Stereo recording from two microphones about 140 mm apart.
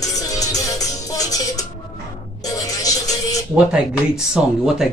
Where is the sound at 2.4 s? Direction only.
25° left (ahead or behind).